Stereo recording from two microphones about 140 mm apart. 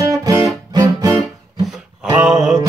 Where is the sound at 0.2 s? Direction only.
25° right (ahead or behind).